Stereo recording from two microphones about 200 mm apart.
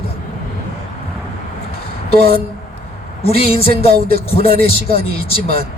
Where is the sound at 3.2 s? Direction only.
30° left (ahead or behind).